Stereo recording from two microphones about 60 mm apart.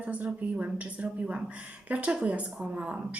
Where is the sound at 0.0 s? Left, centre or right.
Right.